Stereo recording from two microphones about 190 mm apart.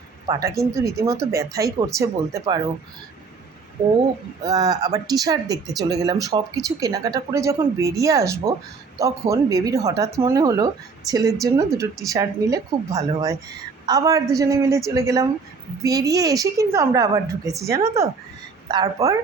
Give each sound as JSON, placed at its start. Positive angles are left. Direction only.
{"t": 0.3, "sound": "a woman's voice", "side_deg": -20}
{"t": 4.4, "sound": "a woman's voice", "side_deg": -20}